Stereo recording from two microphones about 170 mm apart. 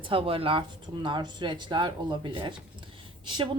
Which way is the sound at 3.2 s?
25° right (ahead or behind).